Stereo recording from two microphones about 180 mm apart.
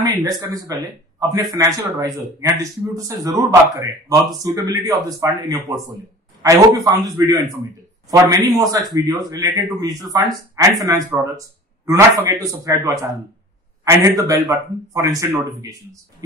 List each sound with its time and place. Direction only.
0.0 s a man's voice: 20° right (ahead or behind)
8.3 s a man's voice: 20° right (ahead or behind)